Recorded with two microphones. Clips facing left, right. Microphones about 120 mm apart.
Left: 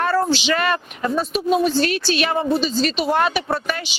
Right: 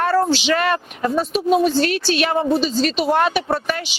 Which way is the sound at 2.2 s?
25° right (ahead or behind).